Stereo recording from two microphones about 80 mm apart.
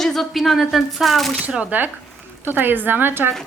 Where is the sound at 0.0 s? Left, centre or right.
Centre.